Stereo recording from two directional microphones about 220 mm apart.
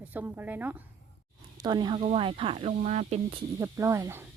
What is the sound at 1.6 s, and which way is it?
Speech, 20° right (ahead or behind).